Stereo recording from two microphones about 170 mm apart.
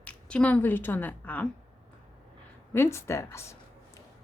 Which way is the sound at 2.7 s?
15° left (ahead or behind).